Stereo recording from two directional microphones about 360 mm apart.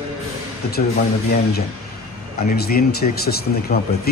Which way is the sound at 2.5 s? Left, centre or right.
Left.